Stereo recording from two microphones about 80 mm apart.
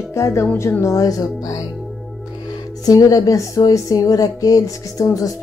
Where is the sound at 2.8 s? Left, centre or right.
Left.